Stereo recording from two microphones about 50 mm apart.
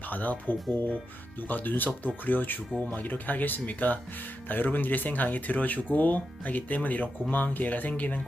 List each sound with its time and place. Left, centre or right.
0.1 s speech: left